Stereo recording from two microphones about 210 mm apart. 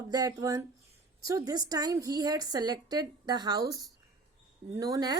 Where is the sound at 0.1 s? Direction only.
20° right (ahead or behind).